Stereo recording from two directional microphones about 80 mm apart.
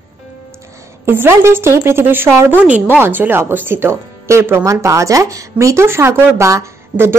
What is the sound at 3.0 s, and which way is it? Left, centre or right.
Speech, right.